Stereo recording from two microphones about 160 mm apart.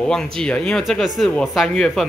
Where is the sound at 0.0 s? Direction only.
5° left (ahead or behind).